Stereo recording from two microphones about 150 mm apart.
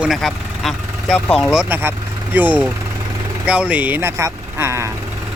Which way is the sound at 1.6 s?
15° right (ahead or behind).